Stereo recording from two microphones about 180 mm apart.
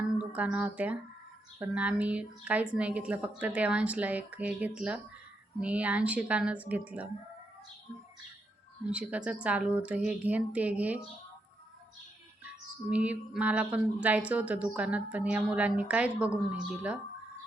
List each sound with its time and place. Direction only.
0.2 s a woman's voice: 5° right (ahead or behind)
8.9 s a woman's voice: 5° right (ahead or behind)
12.9 s a woman's voice: 5° right (ahead or behind)